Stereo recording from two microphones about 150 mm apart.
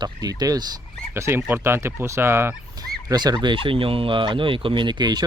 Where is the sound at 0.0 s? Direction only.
25° right (ahead or behind).